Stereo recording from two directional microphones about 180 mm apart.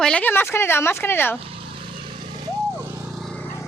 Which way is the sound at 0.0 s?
5° left (ahead or behind).